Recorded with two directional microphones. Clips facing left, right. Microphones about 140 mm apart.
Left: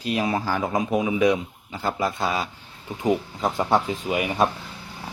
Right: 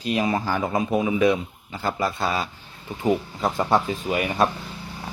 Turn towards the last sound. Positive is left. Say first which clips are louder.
# even
turn(degrees=10)  # may be behind; listen again after turning